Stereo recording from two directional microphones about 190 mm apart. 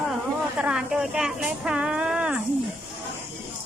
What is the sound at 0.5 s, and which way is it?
A woman's voice, 5° right (ahead or behind).